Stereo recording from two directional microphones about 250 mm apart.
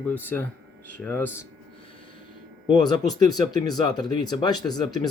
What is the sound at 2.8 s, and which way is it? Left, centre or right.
Speech, centre.